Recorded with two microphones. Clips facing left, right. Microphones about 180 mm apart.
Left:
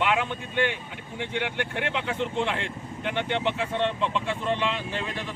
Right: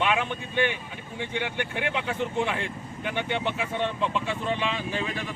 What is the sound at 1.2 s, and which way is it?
Speech, 60° left (ahead or behind).